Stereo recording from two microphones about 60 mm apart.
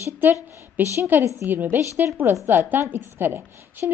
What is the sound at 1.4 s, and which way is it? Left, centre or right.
Speech, right.